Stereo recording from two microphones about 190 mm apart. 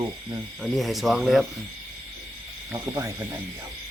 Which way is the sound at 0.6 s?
Centre (ahead or behind).